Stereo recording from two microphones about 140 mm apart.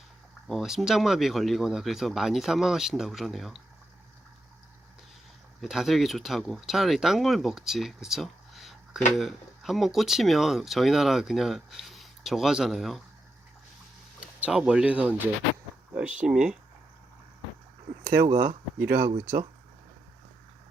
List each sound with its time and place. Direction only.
0.4 s speech: centre (ahead or behind)
5.5 s speech: centre (ahead or behind)
14.2 s speech: 10° right (ahead or behind)
18.0 s speech: 90° right